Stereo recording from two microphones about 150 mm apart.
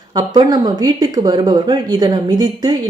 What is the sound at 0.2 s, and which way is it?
Speech, 25° right (ahead or behind).